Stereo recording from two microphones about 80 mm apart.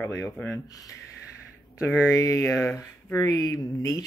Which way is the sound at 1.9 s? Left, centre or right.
Left.